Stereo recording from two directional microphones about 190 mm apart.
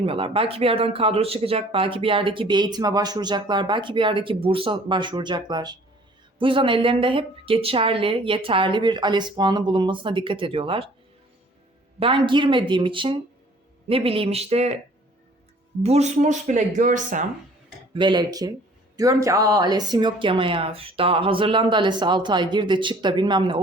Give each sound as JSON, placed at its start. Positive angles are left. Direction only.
{"t": 0.0, "sound": "speech", "side_deg": -30}
{"t": 11.9, "sound": "speech", "side_deg": -30}
{"t": 15.8, "sound": "speech", "side_deg": -35}
{"t": 17.9, "sound": "speech", "side_deg": -25}